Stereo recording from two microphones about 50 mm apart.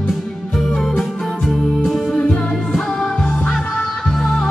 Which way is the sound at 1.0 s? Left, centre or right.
Centre.